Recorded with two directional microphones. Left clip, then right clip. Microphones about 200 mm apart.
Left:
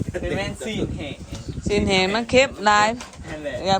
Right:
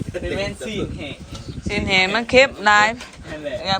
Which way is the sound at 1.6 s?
25° left (ahead or behind).